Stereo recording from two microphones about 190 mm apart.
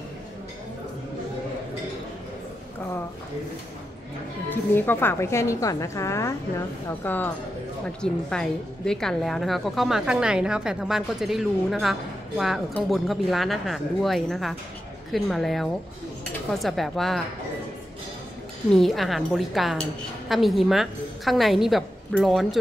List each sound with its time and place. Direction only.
4.5 s a woman's voice: 10° left (ahead or behind)
18.7 s a woman's voice: centre (ahead or behind)